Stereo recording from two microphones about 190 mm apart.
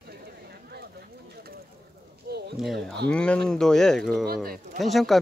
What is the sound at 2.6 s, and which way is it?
Speech, centre (ahead or behind).